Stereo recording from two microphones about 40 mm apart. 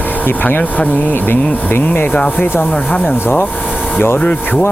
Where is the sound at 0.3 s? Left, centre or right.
Left.